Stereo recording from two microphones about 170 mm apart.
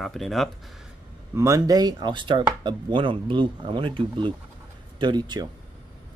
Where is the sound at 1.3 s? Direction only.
20° right (ahead or behind).